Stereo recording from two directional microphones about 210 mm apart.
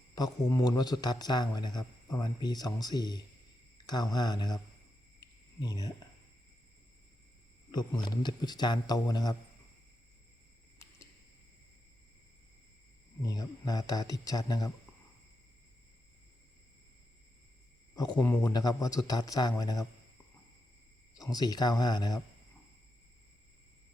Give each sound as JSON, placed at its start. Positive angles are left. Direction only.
{"t": 0.2, "sound": "speech", "side_deg": 15}
{"t": 5.2, "sound": "a sound", "side_deg": 20}
{"t": 7.7, "sound": "speech", "side_deg": 20}
{"t": 13.2, "sound": "speech", "side_deg": 15}
{"t": 17.9, "sound": "speech", "side_deg": 20}
{"t": 21.3, "sound": "speech", "side_deg": 20}